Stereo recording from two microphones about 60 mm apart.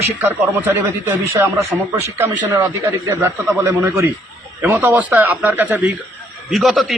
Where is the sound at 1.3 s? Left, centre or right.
Right.